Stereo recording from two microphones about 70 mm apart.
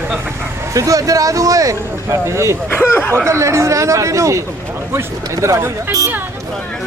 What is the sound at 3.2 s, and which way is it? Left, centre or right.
Speech, right.